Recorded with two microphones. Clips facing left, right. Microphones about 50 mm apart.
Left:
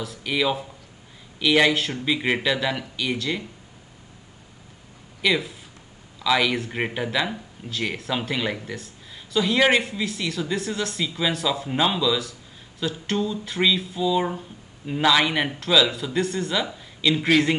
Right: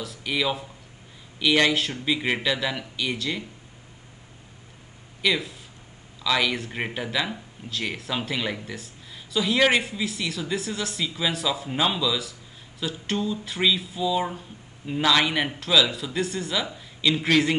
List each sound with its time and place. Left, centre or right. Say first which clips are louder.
0.0 s speech: left 2 dB; centre
5.2 s speech: left 2 dB; centre